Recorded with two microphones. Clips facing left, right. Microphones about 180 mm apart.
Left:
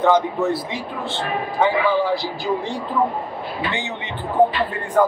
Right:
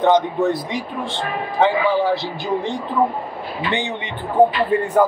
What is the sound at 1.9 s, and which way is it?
Speech, 30° right (ahead or behind).